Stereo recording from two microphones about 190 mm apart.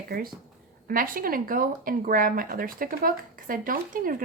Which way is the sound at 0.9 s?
50° right (ahead or behind).